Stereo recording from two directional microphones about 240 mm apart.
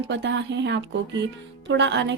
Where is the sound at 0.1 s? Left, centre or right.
Right.